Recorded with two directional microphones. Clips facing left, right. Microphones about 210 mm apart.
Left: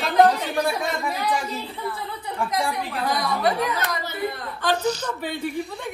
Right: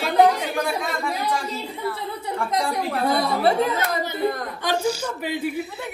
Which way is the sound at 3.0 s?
30° right (ahead or behind).